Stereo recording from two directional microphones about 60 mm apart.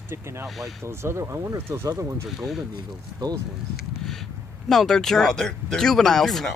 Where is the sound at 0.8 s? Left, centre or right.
Right.